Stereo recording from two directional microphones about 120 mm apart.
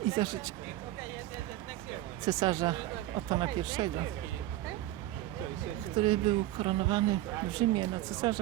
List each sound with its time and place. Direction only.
0.2 s speech: 35° right (ahead or behind)
2.2 s speech: 35° right (ahead or behind)
6.0 s speech: 50° right (ahead or behind)